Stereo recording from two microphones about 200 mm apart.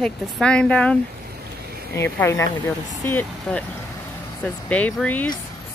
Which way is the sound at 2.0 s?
10° left (ahead or behind).